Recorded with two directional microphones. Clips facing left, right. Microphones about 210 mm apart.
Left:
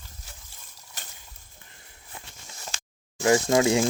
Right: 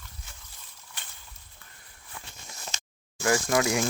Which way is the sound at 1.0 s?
40° left (ahead or behind).